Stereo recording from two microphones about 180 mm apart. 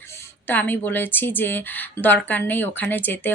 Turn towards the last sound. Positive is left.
turn(degrees=10)  # may be behind; listen again after turning